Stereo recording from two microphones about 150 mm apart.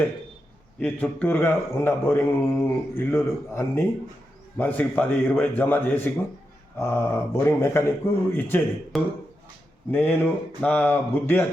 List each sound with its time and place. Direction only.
0.8 s speech: 5° left (ahead or behind)
8.9 s speech: centre (ahead or behind)
9.9 s speech: 10° left (ahead or behind)